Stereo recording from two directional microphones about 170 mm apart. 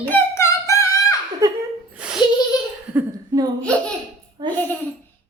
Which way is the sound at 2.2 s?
25° left (ahead or behind).